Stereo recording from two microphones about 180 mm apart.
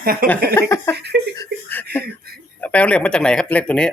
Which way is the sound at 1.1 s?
65° right (ahead or behind).